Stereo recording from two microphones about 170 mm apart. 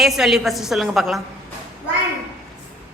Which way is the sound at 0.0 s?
Centre (ahead or behind).